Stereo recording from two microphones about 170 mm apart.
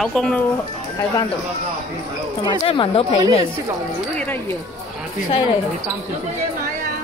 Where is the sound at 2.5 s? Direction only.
30° left (ahead or behind).